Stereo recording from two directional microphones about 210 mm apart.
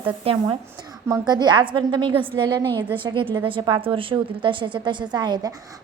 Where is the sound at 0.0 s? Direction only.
25° right (ahead or behind).